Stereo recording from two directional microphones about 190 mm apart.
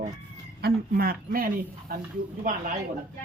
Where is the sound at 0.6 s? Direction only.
50° right (ahead or behind).